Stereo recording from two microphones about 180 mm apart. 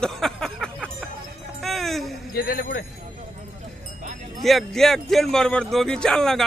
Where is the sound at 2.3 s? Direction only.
55° left (ahead or behind).